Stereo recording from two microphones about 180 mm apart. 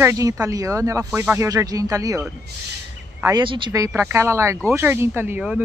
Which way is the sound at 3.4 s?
25° right (ahead or behind).